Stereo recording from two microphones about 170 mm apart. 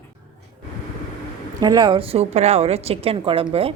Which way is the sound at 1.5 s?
25° right (ahead or behind).